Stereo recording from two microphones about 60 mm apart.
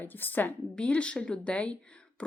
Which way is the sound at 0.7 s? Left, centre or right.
Centre.